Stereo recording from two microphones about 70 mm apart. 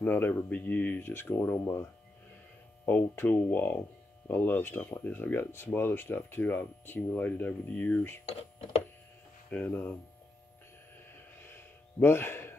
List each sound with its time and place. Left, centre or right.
0.0 s speech: left
9.5 s speech: left
12.0 s speech: left